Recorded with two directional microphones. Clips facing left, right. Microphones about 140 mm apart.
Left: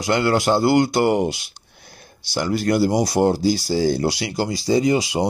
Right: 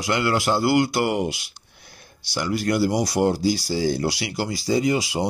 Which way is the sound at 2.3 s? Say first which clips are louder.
Left 3 dB; 30° left (ahead or behind).